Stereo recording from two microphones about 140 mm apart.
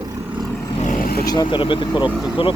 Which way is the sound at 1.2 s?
30° left (ahead or behind).